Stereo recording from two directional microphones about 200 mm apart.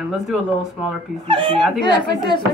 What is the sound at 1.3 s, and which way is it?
Speech, 25° right (ahead or behind).